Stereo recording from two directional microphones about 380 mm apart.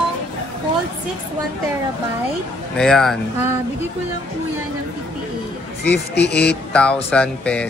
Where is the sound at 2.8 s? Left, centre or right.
Centre.